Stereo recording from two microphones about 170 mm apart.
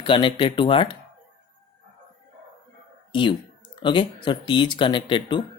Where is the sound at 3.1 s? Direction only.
30° left (ahead or behind).